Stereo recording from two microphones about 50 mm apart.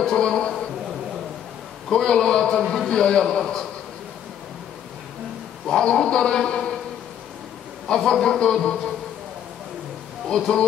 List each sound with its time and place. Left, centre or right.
0.1 s a man's voice: centre
1.9 s a man's voice: centre
5.7 s a man's voice: centre
7.9 s a man's voice: centre
10.2 s a man's voice: centre